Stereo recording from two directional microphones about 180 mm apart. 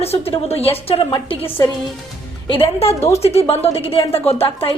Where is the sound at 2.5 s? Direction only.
30° left (ahead or behind).